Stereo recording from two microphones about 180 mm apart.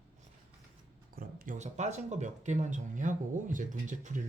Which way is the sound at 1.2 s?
50° right (ahead or behind).